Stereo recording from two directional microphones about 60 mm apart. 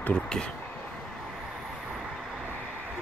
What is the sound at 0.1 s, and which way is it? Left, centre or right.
Speech, centre.